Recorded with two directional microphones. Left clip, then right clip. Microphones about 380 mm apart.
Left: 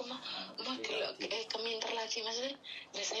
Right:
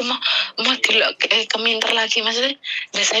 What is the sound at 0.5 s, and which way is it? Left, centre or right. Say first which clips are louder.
A woman's voice: right 19 dB; right.